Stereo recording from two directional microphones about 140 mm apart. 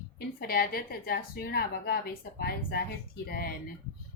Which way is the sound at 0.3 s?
90° left.